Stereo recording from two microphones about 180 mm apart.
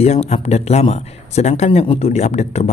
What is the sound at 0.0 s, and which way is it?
Speech, 35° left (ahead or behind).